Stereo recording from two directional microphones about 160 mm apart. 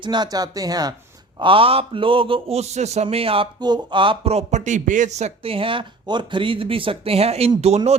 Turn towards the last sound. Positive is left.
turn(degrees=-40)  # may be behind; listen again after turning